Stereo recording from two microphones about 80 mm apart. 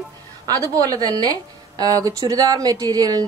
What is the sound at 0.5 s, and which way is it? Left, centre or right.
A woman's voice, right.